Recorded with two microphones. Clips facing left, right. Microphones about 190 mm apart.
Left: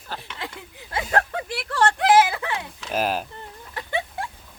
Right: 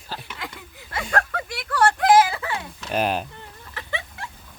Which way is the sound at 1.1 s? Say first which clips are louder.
Left 2 dB; 30° left (ahead or behind).